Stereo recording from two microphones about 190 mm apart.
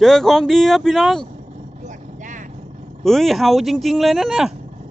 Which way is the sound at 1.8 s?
40° right (ahead or behind).